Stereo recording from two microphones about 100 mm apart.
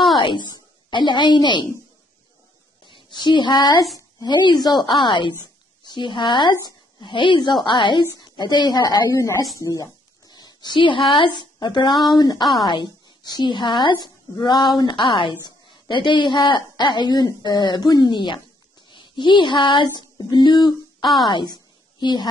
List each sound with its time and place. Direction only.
0.2 s a woman's voice: 50° left (ahead or behind)
2.8 s a woman's voice: 50° left (ahead or behind)
9.2 s speech: 30° left (ahead or behind)
9.6 s a sound: 30° left (ahead or behind); by 11.0 s 55° left (ahead or behind)
11.1 s a woman's voice: 55° left (ahead or behind)
11.9 s speech: centre (ahead or behind)
12.2 s a woman's voice: 45° left (ahead or behind)
18.9 s female singing: 50° left (ahead or behind)
21.0 s speech: centre (ahead or behind)
22.0 s a woman's voice: 45° left (ahead or behind)